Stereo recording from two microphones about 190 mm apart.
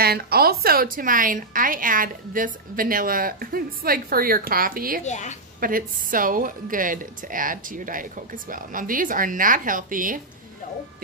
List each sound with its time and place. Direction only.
0.0 s a woman's voice: 55° right (ahead or behind)
5.0 s a woman's voice: 40° left (ahead or behind)
5.6 s a woman's voice: 50° right (ahead or behind)